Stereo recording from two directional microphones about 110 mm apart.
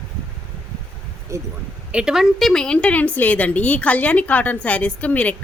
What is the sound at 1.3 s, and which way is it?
Speech, 25° right (ahead or behind).